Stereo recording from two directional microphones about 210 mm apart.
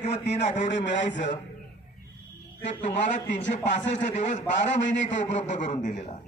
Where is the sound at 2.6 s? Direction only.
35° left (ahead or behind).